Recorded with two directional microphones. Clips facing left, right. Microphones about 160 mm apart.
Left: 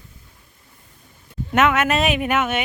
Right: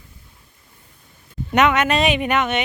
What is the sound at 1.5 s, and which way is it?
Speech, 5° left (ahead or behind).